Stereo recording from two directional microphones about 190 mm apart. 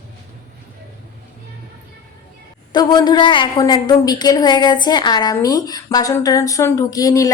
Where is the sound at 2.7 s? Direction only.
20° left (ahead or behind).